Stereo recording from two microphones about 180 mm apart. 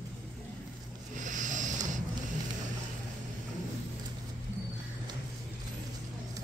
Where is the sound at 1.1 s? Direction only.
45° right (ahead or behind).